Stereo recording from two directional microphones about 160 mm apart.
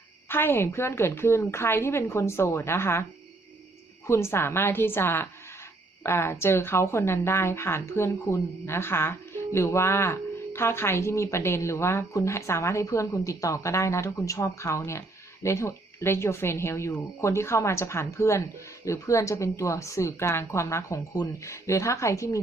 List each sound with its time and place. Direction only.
0.3 s speech: 15° left (ahead or behind)
4.0 s a woman's voice: 15° left (ahead or behind)